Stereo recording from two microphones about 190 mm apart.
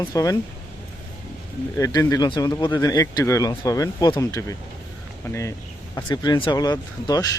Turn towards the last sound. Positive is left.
turn(degrees=20)  # may be behind; listen again after turning